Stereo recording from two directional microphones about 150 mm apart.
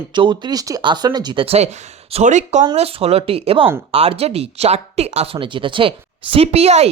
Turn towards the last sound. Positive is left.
turn(degrees=-45)  # may be behind; listen again after turning